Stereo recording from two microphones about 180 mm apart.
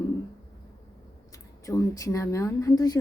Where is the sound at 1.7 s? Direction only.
20° left (ahead or behind).